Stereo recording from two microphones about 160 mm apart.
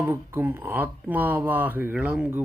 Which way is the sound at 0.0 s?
15° right (ahead or behind).